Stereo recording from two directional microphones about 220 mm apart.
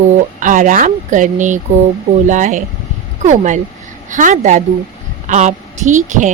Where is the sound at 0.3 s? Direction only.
35° right (ahead or behind).